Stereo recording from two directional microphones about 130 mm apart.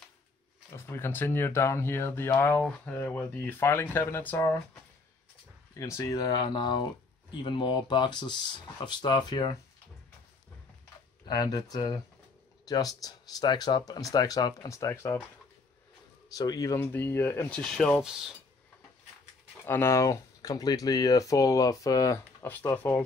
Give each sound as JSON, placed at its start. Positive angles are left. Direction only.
{"t": 0.7, "sound": "speech", "side_deg": 20}
{"t": 5.8, "sound": "speech", "side_deg": 25}
{"t": 11.2, "sound": "speech", "side_deg": 30}
{"t": 16.3, "sound": "speech", "side_deg": 25}
{"t": 17.6, "sound": "speech", "side_deg": 5}
{"t": 19.6, "sound": "speech", "side_deg": 20}